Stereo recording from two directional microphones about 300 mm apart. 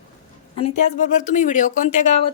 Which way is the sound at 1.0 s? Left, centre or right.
Left.